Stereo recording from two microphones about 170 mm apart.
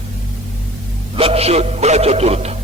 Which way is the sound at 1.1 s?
35° right (ahead or behind).